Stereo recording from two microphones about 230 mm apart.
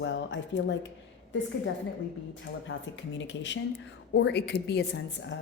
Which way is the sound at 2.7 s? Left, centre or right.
Left.